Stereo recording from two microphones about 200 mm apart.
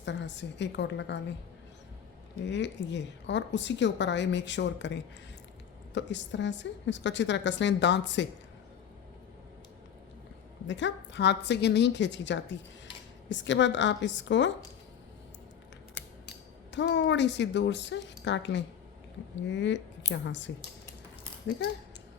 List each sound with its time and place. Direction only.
0.0 s a woman's voice: 60° left (ahead or behind)
2.5 s a woman's voice: 60° left (ahead or behind)
10.7 s a woman's voice: 65° left (ahead or behind)
16.7 s a woman's voice: 60° left (ahead or behind)